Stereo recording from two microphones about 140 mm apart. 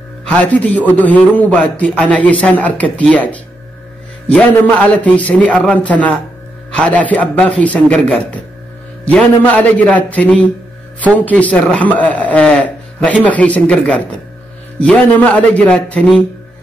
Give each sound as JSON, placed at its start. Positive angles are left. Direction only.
{"t": 0.2, "sound": "a man's voice", "side_deg": 10}